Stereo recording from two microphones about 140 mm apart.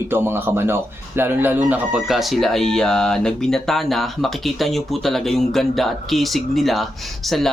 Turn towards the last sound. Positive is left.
turn(degrees=0)  # may be behind; listen again after turning